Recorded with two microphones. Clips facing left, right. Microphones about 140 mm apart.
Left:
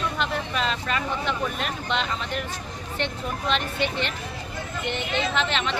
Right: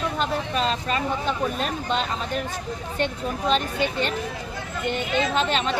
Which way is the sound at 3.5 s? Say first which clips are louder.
Right 3 dB; 40° right (ahead or behind).